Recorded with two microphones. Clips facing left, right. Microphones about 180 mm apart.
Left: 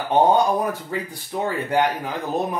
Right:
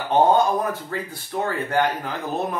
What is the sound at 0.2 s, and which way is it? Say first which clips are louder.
Speech: even; 15° left (ahead or behind).